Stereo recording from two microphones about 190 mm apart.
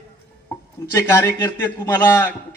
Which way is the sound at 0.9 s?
15° left (ahead or behind).